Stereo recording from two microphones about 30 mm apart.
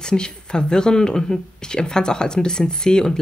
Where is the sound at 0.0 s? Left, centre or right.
Left.